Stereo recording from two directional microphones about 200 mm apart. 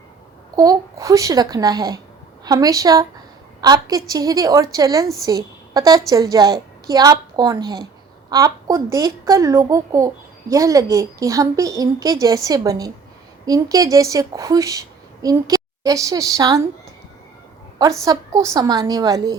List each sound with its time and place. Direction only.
0.5 s a child's voice: 20° right (ahead or behind)
18.0 s a woman's voice: 15° right (ahead or behind)